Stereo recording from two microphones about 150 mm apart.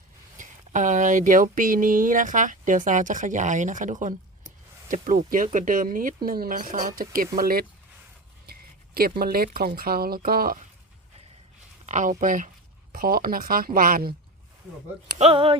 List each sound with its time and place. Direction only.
0.3 s speech: 60° right (ahead or behind)
6.2 s speech: 75° right (ahead or behind)
9.0 s speech: 85° right
11.9 s speech: 55° right (ahead or behind)
12.9 s speech: 75° right (ahead or behind)
15.2 s speech: 40° right (ahead or behind)